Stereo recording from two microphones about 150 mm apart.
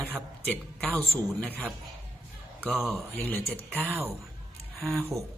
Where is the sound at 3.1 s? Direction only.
15° left (ahead or behind).